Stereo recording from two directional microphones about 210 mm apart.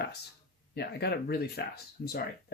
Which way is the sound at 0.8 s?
50° left (ahead or behind).